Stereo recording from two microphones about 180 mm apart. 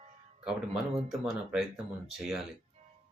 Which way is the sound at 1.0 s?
5° right (ahead or behind).